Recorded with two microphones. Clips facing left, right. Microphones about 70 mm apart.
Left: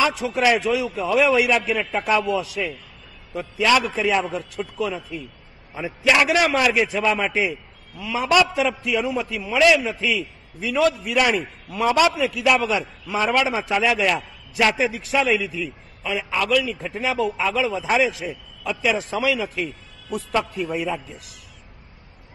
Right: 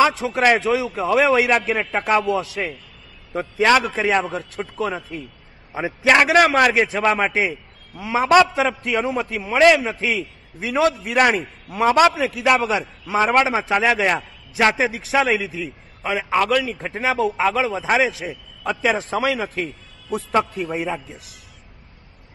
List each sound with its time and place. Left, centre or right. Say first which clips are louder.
0.0 s a man's voice: right 3 dB; right
16.8 s a man's voice: right 2 dB; right